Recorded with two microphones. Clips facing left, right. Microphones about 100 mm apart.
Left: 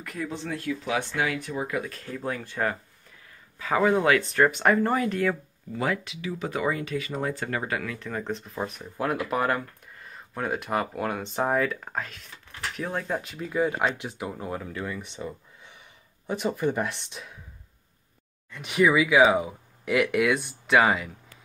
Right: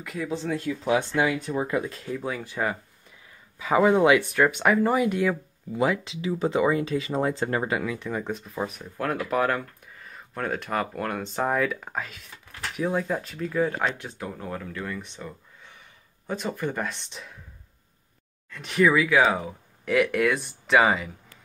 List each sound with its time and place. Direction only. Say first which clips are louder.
0.8 s speech: right 6 dB; 35° right (ahead or behind)
1.2 s speech: right 3 dB; 20° right (ahead or behind)
2.0 s speech: right 1 dB; 5° right (ahead or behind)
4.3 s speech: even; 5° right (ahead or behind); by 15.2 s 15° left (ahead or behind)
16.3 s speech: left 3 dB; 10° left (ahead or behind)
18.5 s speech: right 1 dB; 10° left (ahead or behind)